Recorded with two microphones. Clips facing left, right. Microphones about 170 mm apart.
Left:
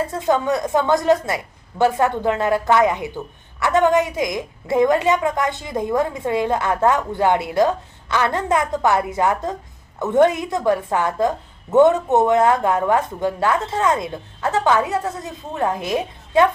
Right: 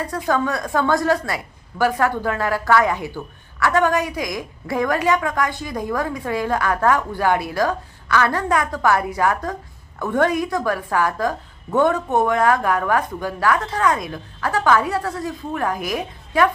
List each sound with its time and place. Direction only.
0.0 s a woman's voice: 25° left (ahead or behind)